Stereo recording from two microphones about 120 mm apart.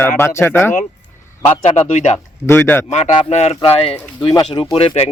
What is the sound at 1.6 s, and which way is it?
Speech, 65° left (ahead or behind).